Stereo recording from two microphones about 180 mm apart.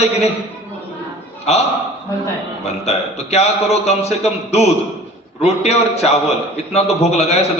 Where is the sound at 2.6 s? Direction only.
35° left (ahead or behind).